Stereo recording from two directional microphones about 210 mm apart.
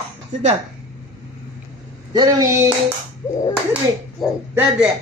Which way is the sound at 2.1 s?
15° right (ahead or behind).